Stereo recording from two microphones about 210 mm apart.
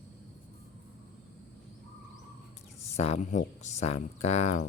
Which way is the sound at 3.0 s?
30° left (ahead or behind).